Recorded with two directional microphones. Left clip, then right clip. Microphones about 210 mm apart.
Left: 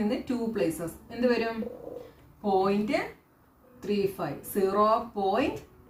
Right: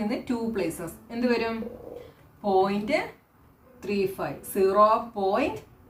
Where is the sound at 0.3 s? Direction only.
30° right (ahead or behind).